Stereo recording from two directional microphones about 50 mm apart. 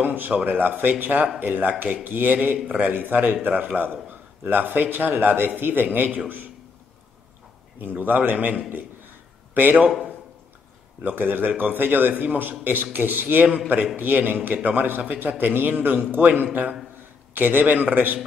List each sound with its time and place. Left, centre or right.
0.0 s a man's voice: right
7.8 s a man's voice: right
11.1 s a man's voice: right